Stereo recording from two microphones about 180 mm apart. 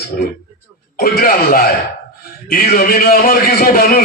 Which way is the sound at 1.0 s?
55° left (ahead or behind).